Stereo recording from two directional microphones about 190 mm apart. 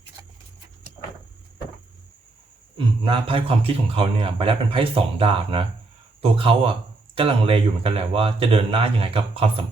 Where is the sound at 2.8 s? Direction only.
25° right (ahead or behind).